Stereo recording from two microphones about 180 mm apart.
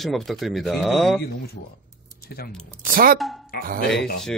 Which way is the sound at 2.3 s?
60° left (ahead or behind).